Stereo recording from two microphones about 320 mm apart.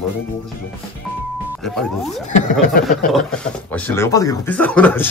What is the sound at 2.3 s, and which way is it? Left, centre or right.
Speech, left.